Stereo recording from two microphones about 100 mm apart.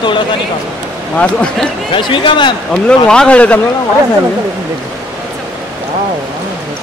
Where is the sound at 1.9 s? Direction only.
55° left (ahead or behind).